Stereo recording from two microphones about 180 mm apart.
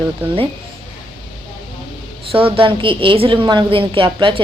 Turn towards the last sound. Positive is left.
turn(degrees=-30)  # may be behind; listen again after turning